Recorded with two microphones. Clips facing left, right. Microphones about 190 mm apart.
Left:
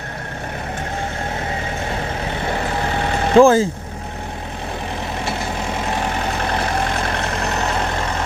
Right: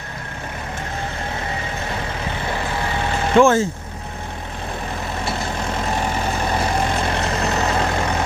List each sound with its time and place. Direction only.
3.3 s speech: 35° left (ahead or behind)
6.5 s vehicle: centre (ahead or behind)